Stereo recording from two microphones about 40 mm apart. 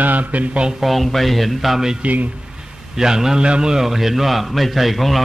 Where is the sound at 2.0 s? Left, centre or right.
Right.